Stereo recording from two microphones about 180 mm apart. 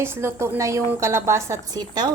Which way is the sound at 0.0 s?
15° right (ahead or behind).